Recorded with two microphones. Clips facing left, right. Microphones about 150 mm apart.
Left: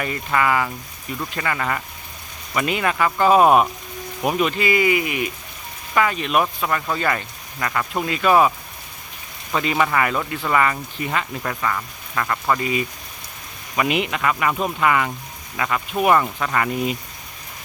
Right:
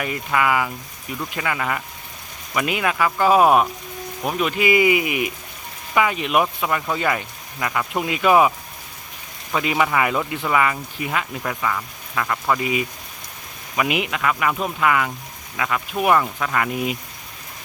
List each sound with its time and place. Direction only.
0.0 s speech: 5° right (ahead or behind)
4.2 s speech: 10° left (ahead or behind)
4.4 s speech: 15° right (ahead or behind)